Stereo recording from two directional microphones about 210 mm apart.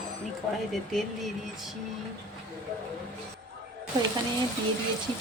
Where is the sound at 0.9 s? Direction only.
Centre (ahead or behind).